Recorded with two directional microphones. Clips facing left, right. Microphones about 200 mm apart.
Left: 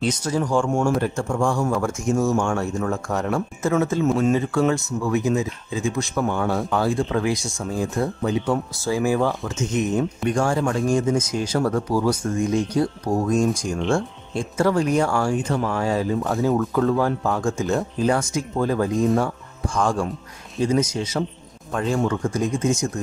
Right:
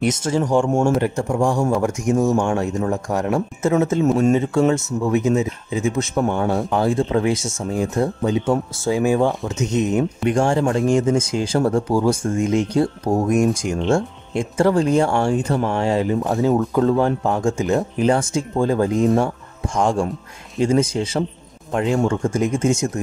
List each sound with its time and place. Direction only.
0.0 s speech: 25° right (ahead or behind)
13.7 s speech: 40° right (ahead or behind)
14.3 s speech: 25° right (ahead or behind)